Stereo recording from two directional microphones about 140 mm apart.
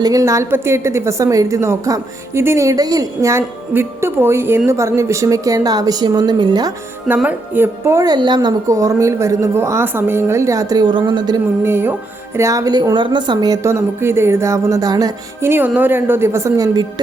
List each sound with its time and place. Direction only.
0.0 s a woman's voice: 25° right (ahead or behind)
7.2 s a woman's voice: 10° right (ahead or behind); by 11.3 s 35° right (ahead or behind)
11.6 s a woman's voice: 15° right (ahead or behind)